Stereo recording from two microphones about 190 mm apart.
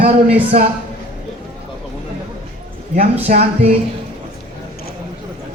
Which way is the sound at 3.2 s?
35° right (ahead or behind).